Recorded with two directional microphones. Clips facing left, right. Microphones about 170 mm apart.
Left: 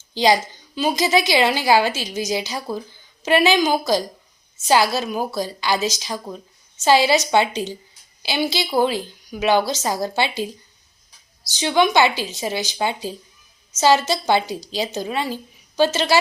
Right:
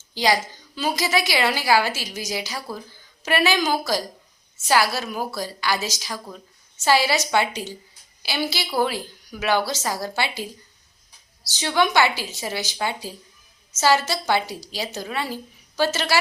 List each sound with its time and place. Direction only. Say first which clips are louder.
0.1 s a woman's voice: left 4 dB; 20° left (ahead or behind)